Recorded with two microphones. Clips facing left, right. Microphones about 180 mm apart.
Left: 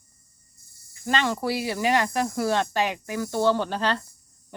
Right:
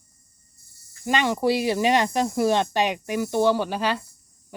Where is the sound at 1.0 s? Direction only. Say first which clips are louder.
Right 3 dB; 15° right (ahead or behind).